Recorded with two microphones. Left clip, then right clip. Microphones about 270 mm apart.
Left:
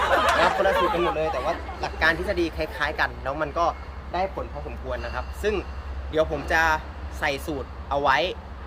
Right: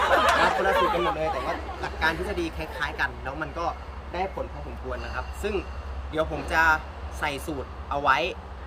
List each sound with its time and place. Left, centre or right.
0.0 s speech: centre
5.5 s speech: centre